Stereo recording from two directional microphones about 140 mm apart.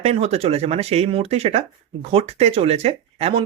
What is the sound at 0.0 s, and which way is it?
Speech, 50° right (ahead or behind).